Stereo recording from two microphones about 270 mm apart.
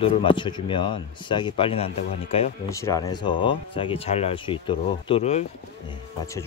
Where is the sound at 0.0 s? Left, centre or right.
Centre.